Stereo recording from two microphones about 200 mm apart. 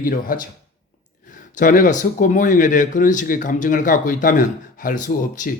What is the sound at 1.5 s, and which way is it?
Speech, 40° left (ahead or behind).